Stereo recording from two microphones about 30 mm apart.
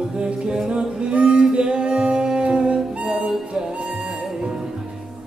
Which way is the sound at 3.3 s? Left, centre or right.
Centre.